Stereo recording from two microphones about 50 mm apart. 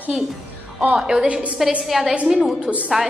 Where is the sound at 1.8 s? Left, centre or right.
Centre.